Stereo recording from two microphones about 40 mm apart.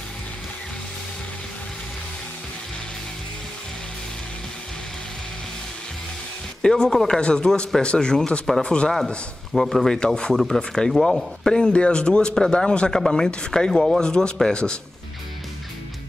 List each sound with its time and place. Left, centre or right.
6.6 s speech: centre
9.5 s speech: centre
9.9 s speech: left
10.3 s speech: centre
11.4 s speech: left